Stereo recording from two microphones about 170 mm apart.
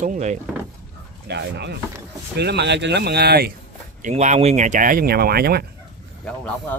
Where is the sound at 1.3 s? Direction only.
85° right; by 3.5 s 65° right (ahead or behind).